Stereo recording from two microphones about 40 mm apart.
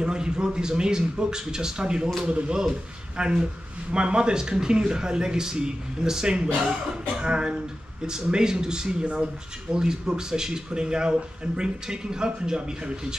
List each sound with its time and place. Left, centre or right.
0.0 s speech: right